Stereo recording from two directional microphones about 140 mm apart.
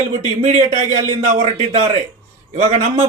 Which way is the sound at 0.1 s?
60° right (ahead or behind).